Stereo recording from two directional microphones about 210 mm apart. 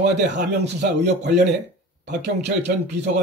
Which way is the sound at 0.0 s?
55° right (ahead or behind).